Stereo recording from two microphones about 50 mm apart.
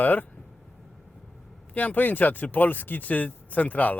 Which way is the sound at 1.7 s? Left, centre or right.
Left.